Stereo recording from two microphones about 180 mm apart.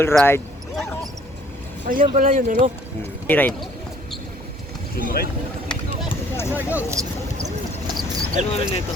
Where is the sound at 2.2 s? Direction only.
45° right (ahead or behind).